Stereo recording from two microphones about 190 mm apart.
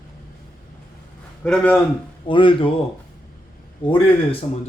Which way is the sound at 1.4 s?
5° left (ahead or behind).